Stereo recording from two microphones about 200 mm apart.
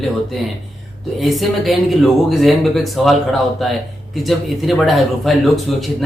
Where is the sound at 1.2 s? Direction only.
Centre (ahead or behind).